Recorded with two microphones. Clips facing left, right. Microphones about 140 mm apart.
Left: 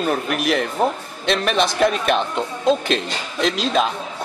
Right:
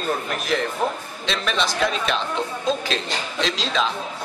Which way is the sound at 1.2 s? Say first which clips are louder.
Left 6 dB; 55° left (ahead or behind).